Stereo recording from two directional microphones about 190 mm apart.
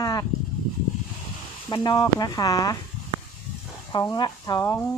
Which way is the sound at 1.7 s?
20° left (ahead or behind).